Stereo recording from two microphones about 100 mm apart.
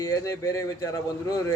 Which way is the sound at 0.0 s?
35° left (ahead or behind).